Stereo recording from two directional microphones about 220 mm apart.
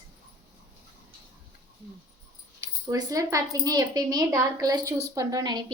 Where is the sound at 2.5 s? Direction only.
15° right (ahead or behind).